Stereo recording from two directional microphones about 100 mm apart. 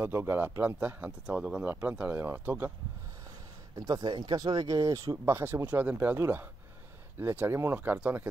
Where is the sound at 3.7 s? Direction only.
40° right (ahead or behind); by 8.2 s 15° right (ahead or behind).